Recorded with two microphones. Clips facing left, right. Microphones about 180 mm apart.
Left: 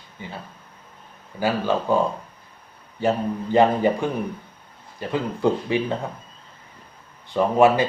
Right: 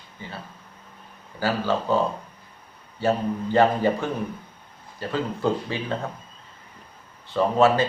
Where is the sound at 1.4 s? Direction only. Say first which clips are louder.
Left 2 dB; 15° left (ahead or behind).